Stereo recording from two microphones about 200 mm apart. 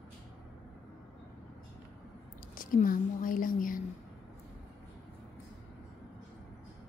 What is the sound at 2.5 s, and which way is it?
A woman's voice, 45° left (ahead or behind).